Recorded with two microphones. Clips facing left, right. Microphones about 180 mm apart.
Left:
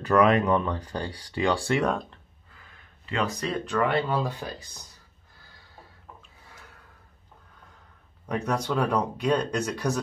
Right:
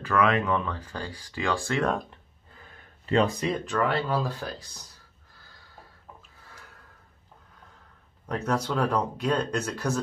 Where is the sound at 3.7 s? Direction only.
Centre (ahead or behind).